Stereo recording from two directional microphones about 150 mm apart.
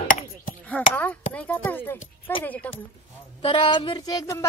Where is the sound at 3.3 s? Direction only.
35° left (ahead or behind).